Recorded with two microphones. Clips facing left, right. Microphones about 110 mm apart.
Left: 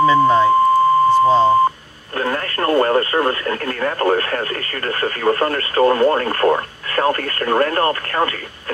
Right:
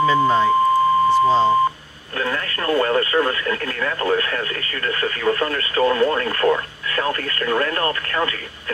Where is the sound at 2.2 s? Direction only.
35° left (ahead or behind).